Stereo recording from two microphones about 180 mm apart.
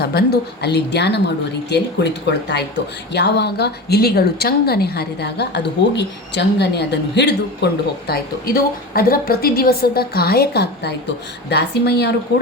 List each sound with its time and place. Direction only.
0.0 s a woman's voice: 60° left (ahead or behind)